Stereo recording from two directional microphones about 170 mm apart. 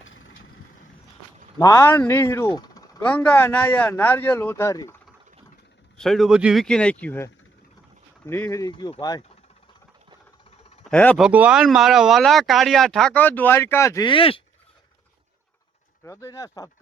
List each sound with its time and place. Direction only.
1.5 s speech: 20° left (ahead or behind)
3.0 s speech: 10° left (ahead or behind)
6.0 s speech: centre (ahead or behind)
8.3 s speech: 15° left (ahead or behind)
10.8 s speech: 5° left (ahead or behind)
11.2 s speech: 5° right (ahead or behind); by 14.4 s 30° left (ahead or behind)
16.0 s speech: 20° left (ahead or behind)